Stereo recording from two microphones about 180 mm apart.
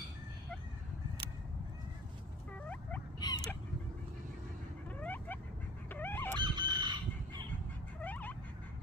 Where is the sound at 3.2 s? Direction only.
20° left (ahead or behind).